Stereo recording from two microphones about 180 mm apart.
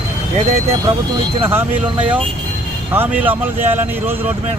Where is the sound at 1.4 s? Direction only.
10° right (ahead or behind).